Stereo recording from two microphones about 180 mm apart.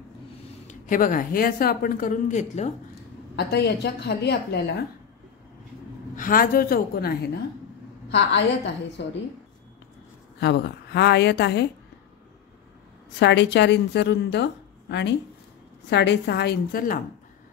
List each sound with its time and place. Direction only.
0.7 s speech: 50° left (ahead or behind)
3.3 s a woman's voice: 65° left (ahead or behind)
6.1 s a woman's voice: 50° left (ahead or behind)
8.1 s a woman's voice: 80° left
10.4 s a woman's voice: 70° left (ahead or behind)
13.2 s a woman's voice: 75° left (ahead or behind); by 17.0 s 55° left (ahead or behind)